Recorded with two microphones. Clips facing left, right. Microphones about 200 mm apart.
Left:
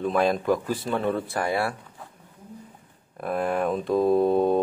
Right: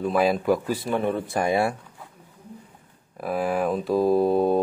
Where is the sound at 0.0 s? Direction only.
5° right (ahead or behind).